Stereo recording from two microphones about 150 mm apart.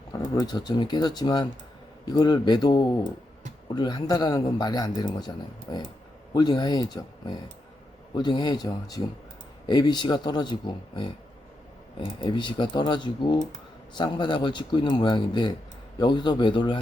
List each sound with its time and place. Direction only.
0.1 s a man's voice: 25° left (ahead or behind)